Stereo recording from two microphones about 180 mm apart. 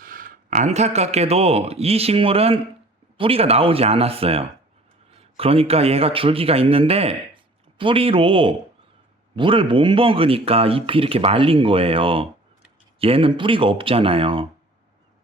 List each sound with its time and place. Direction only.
0.0 s a man's voice: 50° right (ahead or behind); by 14.4 s 30° right (ahead or behind)